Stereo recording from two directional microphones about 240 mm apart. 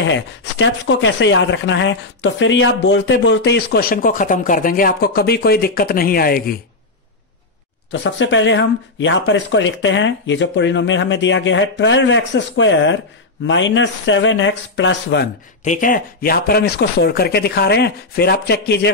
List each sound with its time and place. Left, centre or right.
0.0 s speech: left
7.9 s speech: left
15.6 s speech: left